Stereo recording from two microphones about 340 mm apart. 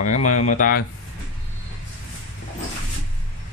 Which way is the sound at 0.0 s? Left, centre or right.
Left.